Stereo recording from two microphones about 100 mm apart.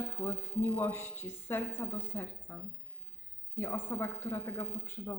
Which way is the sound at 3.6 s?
25° left (ahead or behind).